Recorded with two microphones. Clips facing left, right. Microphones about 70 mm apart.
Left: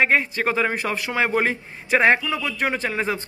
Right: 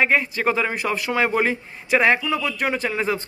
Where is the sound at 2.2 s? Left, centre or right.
Centre.